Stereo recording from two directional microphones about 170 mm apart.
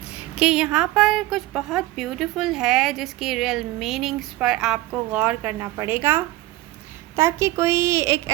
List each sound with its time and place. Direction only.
0.0 s a woman's voice: 5° right (ahead or behind)